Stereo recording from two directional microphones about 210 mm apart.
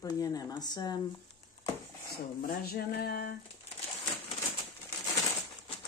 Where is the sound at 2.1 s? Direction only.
45° left (ahead or behind).